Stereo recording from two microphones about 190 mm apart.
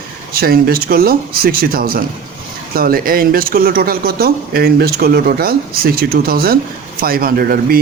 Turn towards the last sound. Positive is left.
turn(degrees=-50)  # may be behind; listen again after turning